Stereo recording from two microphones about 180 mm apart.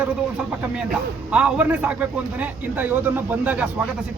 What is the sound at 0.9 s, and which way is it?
A man's voice, 5° right (ahead or behind).